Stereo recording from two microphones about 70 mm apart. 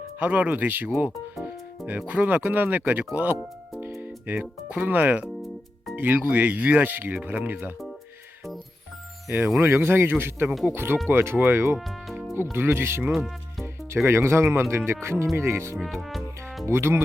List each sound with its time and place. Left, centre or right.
0.2 s speech: right
9.6 s speech: right
13.1 s music: centre
13.9 s speech: right
15.8 s music: centre
16.6 s speech: right